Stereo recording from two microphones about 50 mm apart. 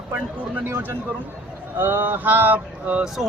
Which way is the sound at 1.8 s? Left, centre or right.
Right.